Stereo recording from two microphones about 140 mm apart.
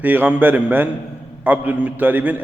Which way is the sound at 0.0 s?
10° right (ahead or behind).